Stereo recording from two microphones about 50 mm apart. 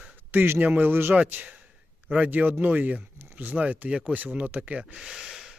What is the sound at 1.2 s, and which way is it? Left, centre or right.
Speech, right.